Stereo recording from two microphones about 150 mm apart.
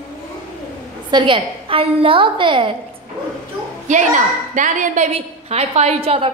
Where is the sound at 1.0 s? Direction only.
30° right (ahead or behind).